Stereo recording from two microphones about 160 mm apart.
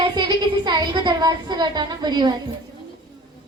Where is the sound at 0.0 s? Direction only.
30° right (ahead or behind).